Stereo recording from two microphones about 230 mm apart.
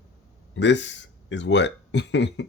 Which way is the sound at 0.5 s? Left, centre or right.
Left.